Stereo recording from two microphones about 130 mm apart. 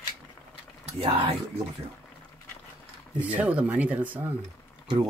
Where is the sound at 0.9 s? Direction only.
45° right (ahead or behind).